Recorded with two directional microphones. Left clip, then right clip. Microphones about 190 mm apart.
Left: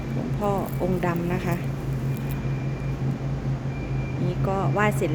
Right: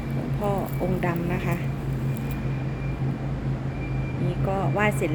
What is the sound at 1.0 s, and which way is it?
Speech, 15° left (ahead or behind).